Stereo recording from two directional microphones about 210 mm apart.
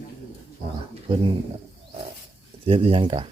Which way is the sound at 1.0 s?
20° right (ahead or behind).